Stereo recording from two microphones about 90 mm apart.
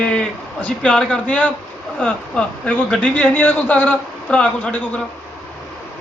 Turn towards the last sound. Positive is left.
turn(degrees=15)  # may be behind; listen again after turning